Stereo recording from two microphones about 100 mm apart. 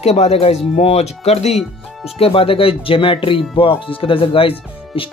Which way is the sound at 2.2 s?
70° left (ahead or behind).